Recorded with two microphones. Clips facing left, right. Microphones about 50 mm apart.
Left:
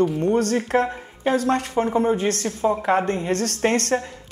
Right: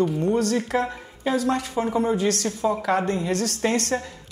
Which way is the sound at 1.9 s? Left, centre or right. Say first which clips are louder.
Even; left.